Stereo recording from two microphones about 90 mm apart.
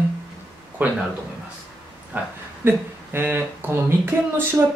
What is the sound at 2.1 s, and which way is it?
Speech, 20° right (ahead or behind).